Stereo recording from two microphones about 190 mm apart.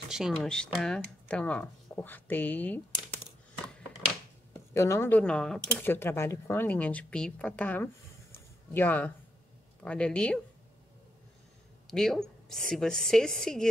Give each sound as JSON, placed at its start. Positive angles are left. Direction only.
{"t": 0.1, "sound": "speech", "side_deg": 0}
{"t": 3.0, "sound": "coin", "side_deg": -5}
{"t": 4.7, "sound": "a woman's voice", "side_deg": 15}
{"t": 11.9, "sound": "a woman's voice", "side_deg": 0}